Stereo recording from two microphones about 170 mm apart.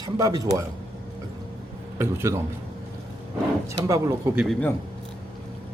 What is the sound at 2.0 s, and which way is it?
Speech, 15° right (ahead or behind).